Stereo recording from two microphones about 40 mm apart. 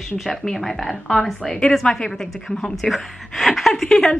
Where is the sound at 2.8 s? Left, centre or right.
Centre.